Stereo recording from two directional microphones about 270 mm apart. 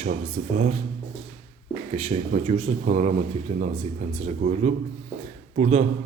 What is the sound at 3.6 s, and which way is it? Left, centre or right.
Speech, centre.